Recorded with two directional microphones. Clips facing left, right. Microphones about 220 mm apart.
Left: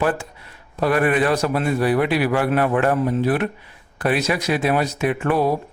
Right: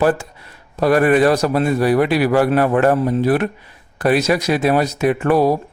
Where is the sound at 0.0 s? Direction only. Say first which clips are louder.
Right 5 dB; 40° right (ahead or behind).